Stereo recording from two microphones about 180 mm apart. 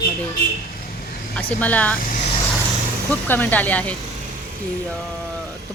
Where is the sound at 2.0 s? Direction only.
45° left (ahead or behind).